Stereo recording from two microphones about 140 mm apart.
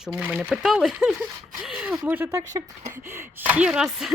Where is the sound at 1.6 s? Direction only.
5° right (ahead or behind).